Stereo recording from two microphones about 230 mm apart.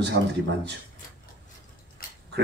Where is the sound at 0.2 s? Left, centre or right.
Right.